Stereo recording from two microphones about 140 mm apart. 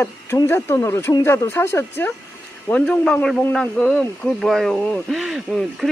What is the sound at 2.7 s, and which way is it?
Speech, 5° left (ahead or behind).